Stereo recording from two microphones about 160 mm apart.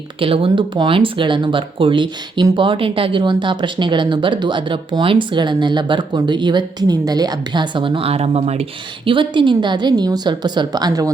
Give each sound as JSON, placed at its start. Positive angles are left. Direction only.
{"t": 0.2, "sound": "a woman's voice", "side_deg": -35}